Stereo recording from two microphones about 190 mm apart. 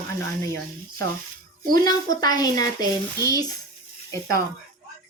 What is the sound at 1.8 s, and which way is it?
A woman's voice, 20° left (ahead or behind).